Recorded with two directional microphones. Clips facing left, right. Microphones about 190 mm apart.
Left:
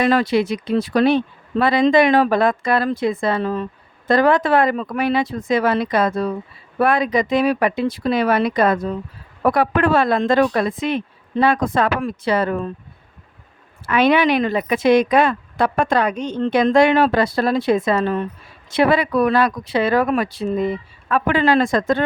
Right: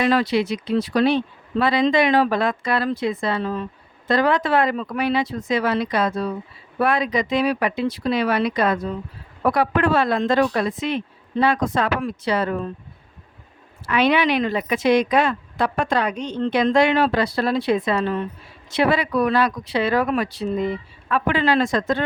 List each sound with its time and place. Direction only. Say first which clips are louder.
0.0 s speech: left 2 dB; 50° left (ahead or behind)
13.8 s speech: left 3 dB; 50° left (ahead or behind)